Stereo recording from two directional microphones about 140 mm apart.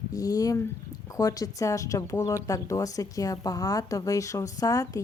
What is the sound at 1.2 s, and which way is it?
Speech, 25° left (ahead or behind).